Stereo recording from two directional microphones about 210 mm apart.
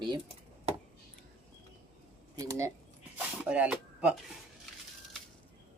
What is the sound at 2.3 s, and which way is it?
Speech, 15° right (ahead or behind).